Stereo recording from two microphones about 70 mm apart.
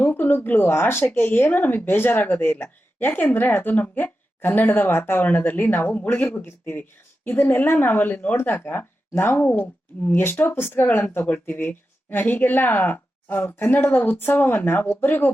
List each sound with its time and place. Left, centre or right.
0.0 s speech: left